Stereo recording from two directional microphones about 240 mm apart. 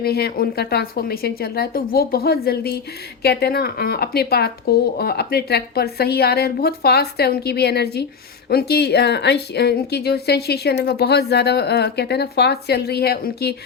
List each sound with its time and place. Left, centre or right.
0.0 s a woman's voice: left